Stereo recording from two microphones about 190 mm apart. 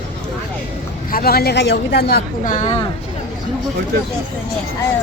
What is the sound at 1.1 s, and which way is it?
A woman's voice, 55° left (ahead or behind).